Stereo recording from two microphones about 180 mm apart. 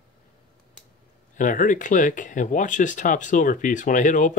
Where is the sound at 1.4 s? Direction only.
45° left (ahead or behind).